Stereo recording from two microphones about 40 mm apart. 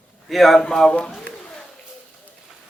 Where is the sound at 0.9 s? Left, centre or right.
Left.